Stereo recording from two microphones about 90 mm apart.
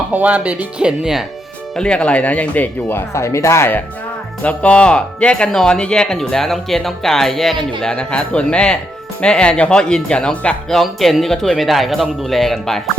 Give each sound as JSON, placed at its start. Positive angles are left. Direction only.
{"t": 0.1, "sound": "speech", "side_deg": -15}
{"t": 1.7, "sound": "speech", "side_deg": 10}
{"t": 3.1, "sound": "speech", "side_deg": 30}
{"t": 4.4, "sound": "speech", "side_deg": 15}